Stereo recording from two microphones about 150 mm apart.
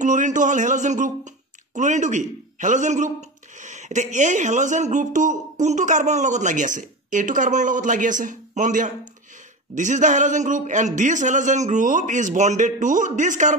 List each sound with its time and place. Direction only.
0.0 s a man's voice: 55° right (ahead or behind)